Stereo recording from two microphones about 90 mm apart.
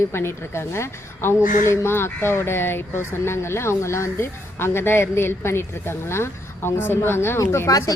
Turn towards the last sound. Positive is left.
turn(degrees=40)  # may be behind; listen again after turning